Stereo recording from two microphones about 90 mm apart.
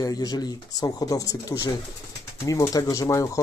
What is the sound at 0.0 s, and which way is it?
Speech, 45° left (ahead or behind).